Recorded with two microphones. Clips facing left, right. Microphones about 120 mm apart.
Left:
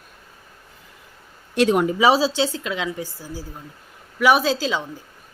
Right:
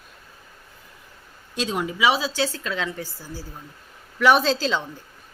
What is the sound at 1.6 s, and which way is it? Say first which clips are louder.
Speech: left 9 dB; 60° left (ahead or behind).